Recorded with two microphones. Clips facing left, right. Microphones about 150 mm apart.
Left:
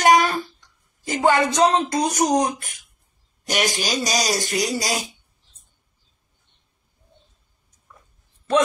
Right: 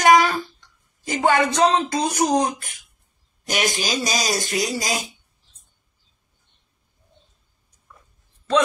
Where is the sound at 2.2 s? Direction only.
20° left (ahead or behind).